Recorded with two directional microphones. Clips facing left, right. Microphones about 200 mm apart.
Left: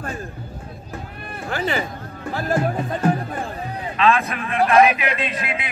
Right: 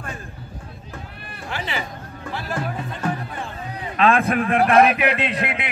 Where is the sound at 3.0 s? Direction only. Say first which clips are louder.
Left 5 dB; 35° left (ahead or behind).